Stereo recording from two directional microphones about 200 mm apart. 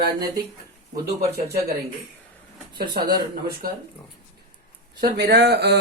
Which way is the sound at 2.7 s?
50° right (ahead or behind).